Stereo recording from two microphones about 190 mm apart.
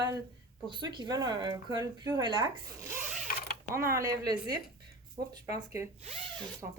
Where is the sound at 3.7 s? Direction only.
50° right (ahead or behind).